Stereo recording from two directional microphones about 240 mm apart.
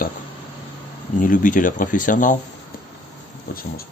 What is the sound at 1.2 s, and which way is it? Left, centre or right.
Speech, left.